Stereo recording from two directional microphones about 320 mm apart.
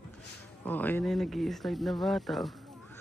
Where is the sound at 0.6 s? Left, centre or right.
Centre.